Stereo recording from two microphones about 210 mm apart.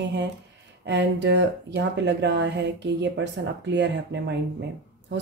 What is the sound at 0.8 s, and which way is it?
Speech, 55° right (ahead or behind).